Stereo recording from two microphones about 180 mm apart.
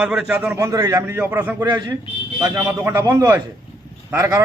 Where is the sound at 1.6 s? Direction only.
25° right (ahead or behind).